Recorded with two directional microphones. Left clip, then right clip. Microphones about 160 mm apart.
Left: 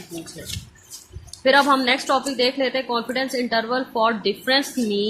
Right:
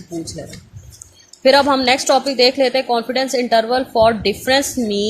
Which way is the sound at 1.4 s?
35° right (ahead or behind).